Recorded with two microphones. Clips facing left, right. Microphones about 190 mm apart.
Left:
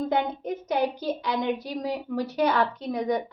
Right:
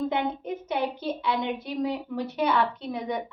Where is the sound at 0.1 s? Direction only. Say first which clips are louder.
Left 2 dB; 40° left (ahead or behind).